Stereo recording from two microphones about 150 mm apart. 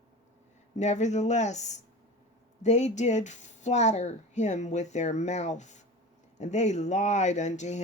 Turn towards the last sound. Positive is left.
turn(degrees=50)  # may be behind; listen again after turning